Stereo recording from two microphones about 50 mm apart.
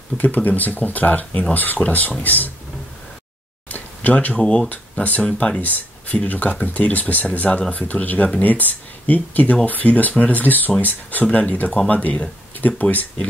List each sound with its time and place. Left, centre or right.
0.2 s speech: left
3.7 s a sound: left
4.4 s speech: centre
4.6 s speech: left